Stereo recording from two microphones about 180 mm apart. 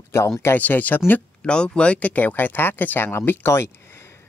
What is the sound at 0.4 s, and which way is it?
Speech, 10° left (ahead or behind).